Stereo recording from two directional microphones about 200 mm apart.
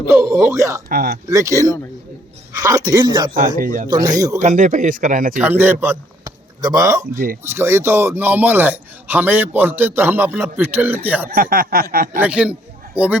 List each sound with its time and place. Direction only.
0.1 s a man's voice: 15° right (ahead or behind)
0.9 s a sound: 45° right (ahead or behind)
1.3 s a man's voice: 15° right (ahead or behind)
3.3 s a sound: 45° right (ahead or behind)
3.8 s a man's voice: 20° right (ahead or behind)
4.4 s speech: 35° right (ahead or behind)
5.4 s a man's voice: 10° right (ahead or behind)
11.3 s a sound: 45° right (ahead or behind)
12.1 s a man's voice: 5° right (ahead or behind)